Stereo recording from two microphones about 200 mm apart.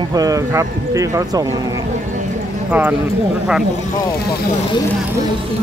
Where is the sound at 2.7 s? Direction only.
10° right (ahead or behind).